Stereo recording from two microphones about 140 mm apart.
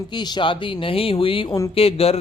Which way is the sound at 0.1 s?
30° left (ahead or behind).